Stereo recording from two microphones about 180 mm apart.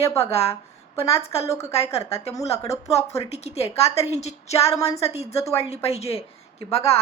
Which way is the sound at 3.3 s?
35° left (ahead or behind).